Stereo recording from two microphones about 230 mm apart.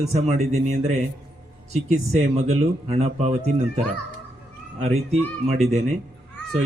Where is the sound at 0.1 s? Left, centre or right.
Right.